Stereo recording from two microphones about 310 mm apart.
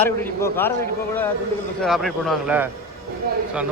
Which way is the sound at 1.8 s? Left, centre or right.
Centre.